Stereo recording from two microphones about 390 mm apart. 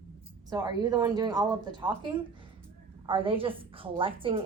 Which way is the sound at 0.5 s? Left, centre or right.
Centre.